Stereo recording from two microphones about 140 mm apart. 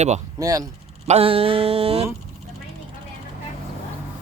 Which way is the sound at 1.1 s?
45° right (ahead or behind).